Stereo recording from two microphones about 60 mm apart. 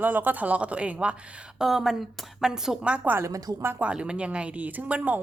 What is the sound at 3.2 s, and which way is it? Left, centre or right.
Speech, right.